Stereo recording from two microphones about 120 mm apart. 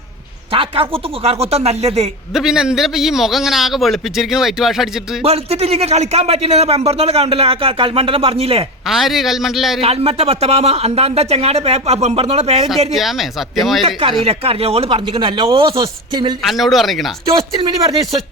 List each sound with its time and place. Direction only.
0.5 s speech: 50° right (ahead or behind)
2.3 s a man's voice: 5° right (ahead or behind)
5.2 s speech: 60° right (ahead or behind)
8.9 s a man's voice: centre (ahead or behind)
9.8 s speech: 55° right (ahead or behind)
12.9 s a man's voice: centre (ahead or behind)
14.3 s speech: 55° right (ahead or behind)
15.7 s speech: 30° right (ahead or behind)
16.4 s a man's voice: centre (ahead or behind)